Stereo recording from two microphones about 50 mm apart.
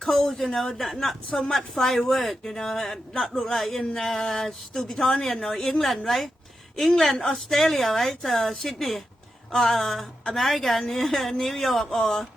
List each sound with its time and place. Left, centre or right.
0.0 s a woman's voice: centre